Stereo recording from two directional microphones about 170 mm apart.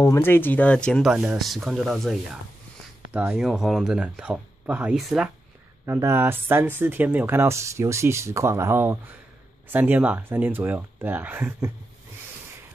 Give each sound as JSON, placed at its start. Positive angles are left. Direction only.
{"t": 0.0, "sound": "speech", "side_deg": 15}
{"t": 1.1, "sound": "speech", "side_deg": -5}
{"t": 5.9, "sound": "speech", "side_deg": -15}